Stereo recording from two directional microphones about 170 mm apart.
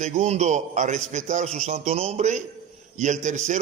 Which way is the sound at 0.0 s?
45° right (ahead or behind).